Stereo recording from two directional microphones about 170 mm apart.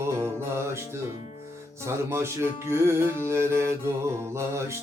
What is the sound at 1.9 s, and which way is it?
Music, 15° right (ahead or behind).